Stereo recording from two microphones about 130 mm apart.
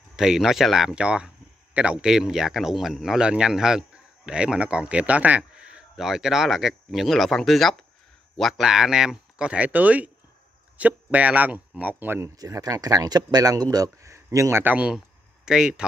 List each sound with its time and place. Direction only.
0.1 s speech: 5° right (ahead or behind)